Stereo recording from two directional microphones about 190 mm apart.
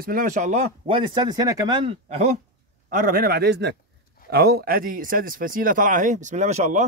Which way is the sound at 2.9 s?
45° right (ahead or behind).